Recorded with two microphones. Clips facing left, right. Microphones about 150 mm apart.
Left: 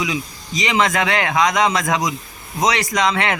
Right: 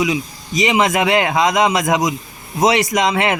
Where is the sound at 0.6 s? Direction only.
20° right (ahead or behind).